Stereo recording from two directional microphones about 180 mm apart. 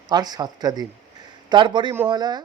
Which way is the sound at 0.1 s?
20° right (ahead or behind).